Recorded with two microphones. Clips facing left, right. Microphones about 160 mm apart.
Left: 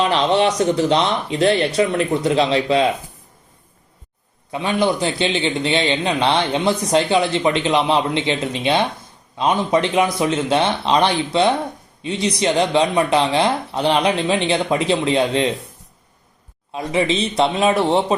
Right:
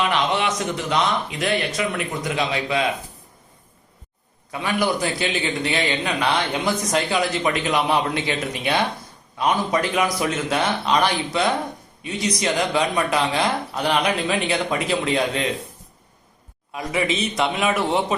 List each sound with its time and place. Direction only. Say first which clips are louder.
0.0 s speech: left 5 dB; 35° left (ahead or behind)
4.5 s a man's voice: left 4 dB; 25° left (ahead or behind)
16.7 s a man's voice: left 4 dB; 25° left (ahead or behind)